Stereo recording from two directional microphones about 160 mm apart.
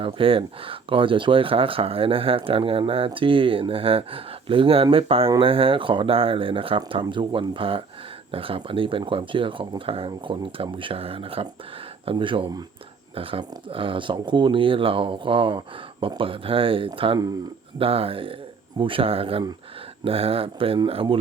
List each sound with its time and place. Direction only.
0.0 s speech: 35° right (ahead or behind)